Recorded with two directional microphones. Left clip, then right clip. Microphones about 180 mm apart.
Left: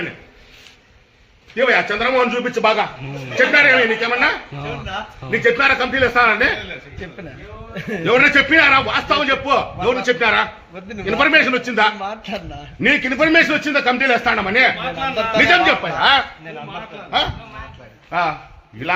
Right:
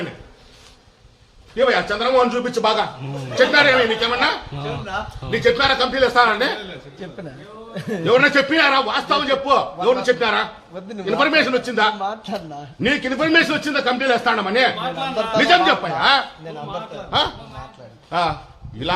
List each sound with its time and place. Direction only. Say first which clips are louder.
1.5 s a man's voice: left 2 dB; 50° left (ahead or behind)
4.5 s speech: even; centre (ahead or behind)
5.3 s a man's voice: left 2 dB; 45° left (ahead or behind)
7.7 s speech: left 1 dB; centre (ahead or behind)
8.0 s a man's voice: left 2 dB; 50° left (ahead or behind)
10.8 s speech: right 2 dB; centre (ahead or behind)
11.2 s a man's voice: left 3 dB; 50° left (ahead or behind)
11.9 s speech: right 1 dB; centre (ahead or behind)
12.8 s a man's voice: left 4 dB; 50° left (ahead or behind)
15.1 s speech: left 2 dB; centre (ahead or behind)
15.4 s a man's voice: right 1 dB; 50° left (ahead or behind)
16.0 s speech: left 3 dB; 35° left (ahead or behind)
18.1 s a man's voice: left 1 dB; 20° right (ahead or behind)